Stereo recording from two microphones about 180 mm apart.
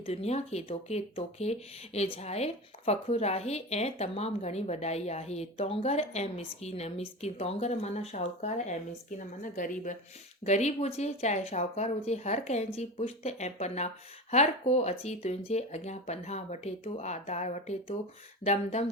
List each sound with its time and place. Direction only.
0.0 s speech: 35° left (ahead or behind)